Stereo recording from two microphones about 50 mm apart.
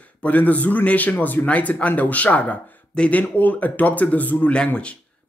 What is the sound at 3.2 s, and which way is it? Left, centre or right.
Speech, left.